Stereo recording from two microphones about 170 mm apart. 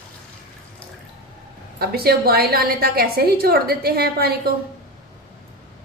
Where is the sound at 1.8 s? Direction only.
65° right (ahead or behind).